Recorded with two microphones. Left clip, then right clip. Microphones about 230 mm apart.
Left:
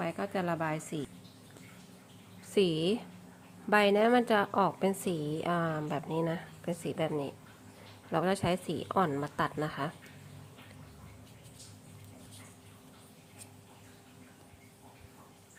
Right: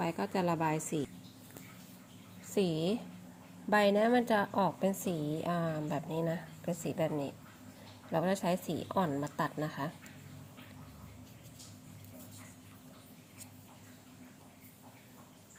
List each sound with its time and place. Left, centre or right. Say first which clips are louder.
0.0 s a woman's voice: even; centre
2.5 s a woman's voice: left 4 dB; centre